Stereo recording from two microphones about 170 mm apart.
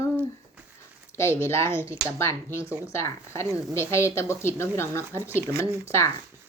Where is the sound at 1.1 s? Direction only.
15° left (ahead or behind).